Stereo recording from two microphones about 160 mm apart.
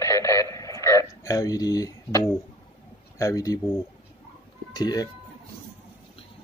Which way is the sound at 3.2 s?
20° left (ahead or behind).